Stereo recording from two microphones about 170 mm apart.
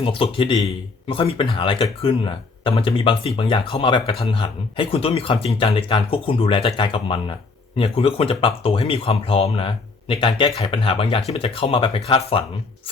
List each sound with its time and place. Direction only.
0.0 s speech: 30° left (ahead or behind)